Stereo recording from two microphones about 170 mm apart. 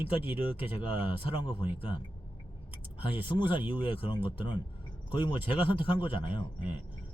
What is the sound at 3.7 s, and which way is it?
Speech, 30° left (ahead or behind).